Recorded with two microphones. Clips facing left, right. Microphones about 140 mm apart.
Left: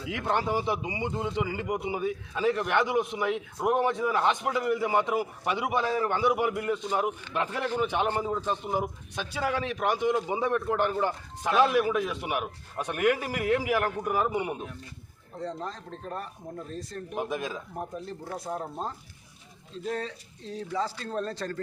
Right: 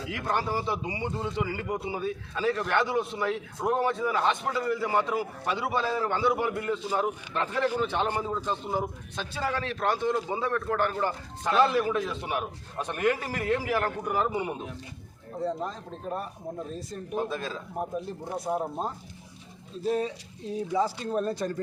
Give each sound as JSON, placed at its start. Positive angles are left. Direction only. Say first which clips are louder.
{"t": 0.1, "sound": "speech", "louder": "left 2 dB", "side_deg": 20}
{"t": 15.4, "sound": "speech", "louder": "right 4 dB", "side_deg": -5}
{"t": 17.2, "sound": "speech", "louder": "right 1 dB", "side_deg": 15}
{"t": 17.7, "sound": "speech", "louder": "right 4 dB", "side_deg": -15}